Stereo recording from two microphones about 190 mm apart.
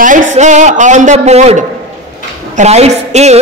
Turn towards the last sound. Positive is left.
turn(degrees=-35)  # may be behind; listen again after turning